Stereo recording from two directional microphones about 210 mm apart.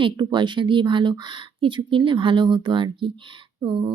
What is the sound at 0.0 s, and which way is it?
Speech, 20° right (ahead or behind).